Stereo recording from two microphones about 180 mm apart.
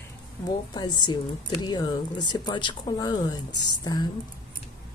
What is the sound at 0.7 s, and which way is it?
Speech, 25° left (ahead or behind).